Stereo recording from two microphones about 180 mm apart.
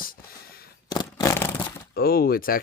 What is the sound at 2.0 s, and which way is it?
Speech, 55° left (ahead or behind).